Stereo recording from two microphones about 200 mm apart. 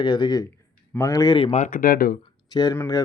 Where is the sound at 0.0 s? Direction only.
20° left (ahead or behind).